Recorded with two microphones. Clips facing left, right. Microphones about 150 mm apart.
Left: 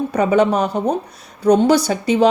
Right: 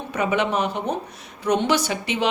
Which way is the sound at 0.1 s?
35° left (ahead or behind).